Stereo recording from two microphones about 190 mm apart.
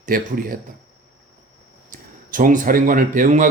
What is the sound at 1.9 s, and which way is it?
Speech, 45° right (ahead or behind).